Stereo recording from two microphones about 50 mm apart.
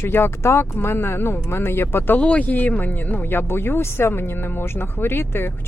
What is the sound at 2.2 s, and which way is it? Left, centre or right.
Speech, left.